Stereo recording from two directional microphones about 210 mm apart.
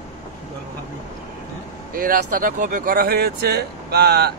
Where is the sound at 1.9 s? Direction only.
40° right (ahead or behind).